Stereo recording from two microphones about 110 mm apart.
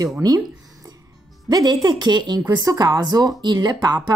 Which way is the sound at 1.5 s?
35° right (ahead or behind).